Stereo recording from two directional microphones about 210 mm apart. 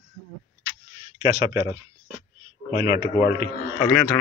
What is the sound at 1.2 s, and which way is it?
Speech, 20° right (ahead or behind).